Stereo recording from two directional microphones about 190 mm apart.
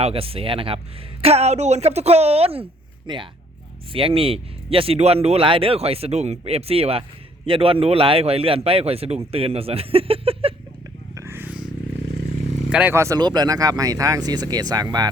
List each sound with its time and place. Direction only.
0.0 s a man's voice: 30° right (ahead or behind)
11.1 s a sound: 15° right (ahead or behind)
12.7 s speech: 10° right (ahead or behind)